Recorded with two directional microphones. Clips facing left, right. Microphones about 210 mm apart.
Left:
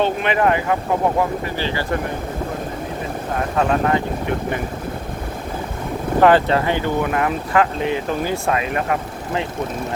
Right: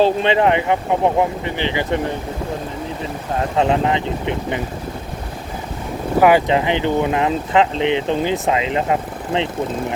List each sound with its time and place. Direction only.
0.0 s speech: 30° right (ahead or behind)
3.5 s speech: 20° right (ahead or behind)
6.1 s speech: 10° right (ahead or behind)